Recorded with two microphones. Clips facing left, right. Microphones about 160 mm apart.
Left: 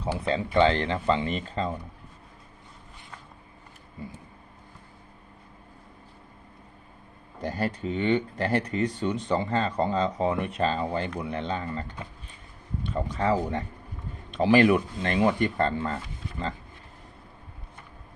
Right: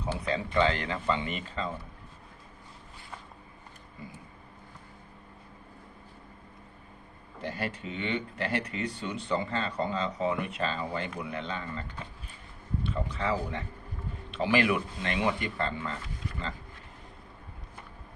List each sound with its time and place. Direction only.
0.3 s speech: 30° left (ahead or behind)
7.4 s speech: 35° left (ahead or behind)
12.9 s speech: 40° left (ahead or behind)